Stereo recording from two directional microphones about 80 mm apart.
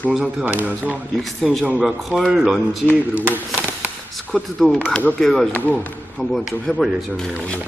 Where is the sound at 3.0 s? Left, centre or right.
Centre.